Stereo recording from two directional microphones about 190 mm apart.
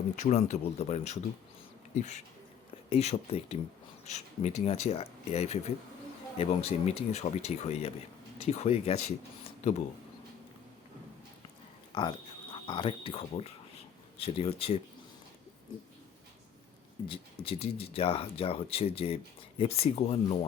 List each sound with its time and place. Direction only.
0.2 s speech: 40° left (ahead or behind)
11.9 s speech: 25° left (ahead or behind)
17.1 s speech: 30° left (ahead or behind)